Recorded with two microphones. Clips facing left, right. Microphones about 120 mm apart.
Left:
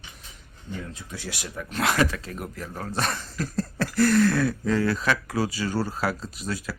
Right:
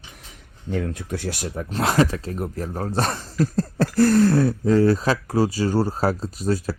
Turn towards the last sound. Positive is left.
turn(degrees=-40)  # may be behind; listen again after turning